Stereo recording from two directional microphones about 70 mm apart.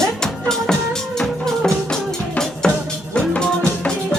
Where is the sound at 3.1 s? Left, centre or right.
Centre.